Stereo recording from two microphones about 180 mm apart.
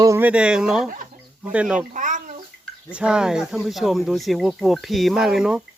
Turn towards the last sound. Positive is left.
turn(degrees=0)  # may be behind; listen again after turning